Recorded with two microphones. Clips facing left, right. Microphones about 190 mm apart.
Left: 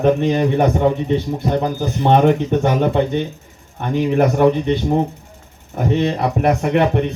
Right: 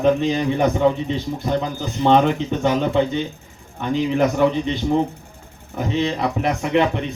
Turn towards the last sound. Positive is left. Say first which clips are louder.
# left 3 dB
turn(degrees=55)  # may be behind; listen again after turning